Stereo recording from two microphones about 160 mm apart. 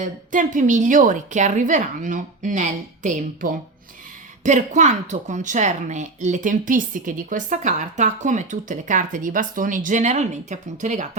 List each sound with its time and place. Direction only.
0.0 s a woman's voice: 55° right (ahead or behind)